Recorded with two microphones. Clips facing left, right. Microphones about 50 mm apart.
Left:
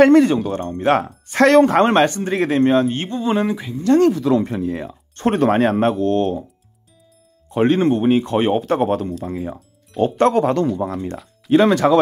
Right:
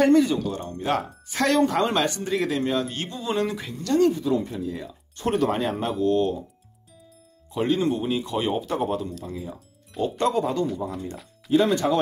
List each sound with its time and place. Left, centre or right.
0.0 s speech: left
0.6 s speech: left
3.4 s speech: centre
4.0 s speech: left
7.5 s speech: left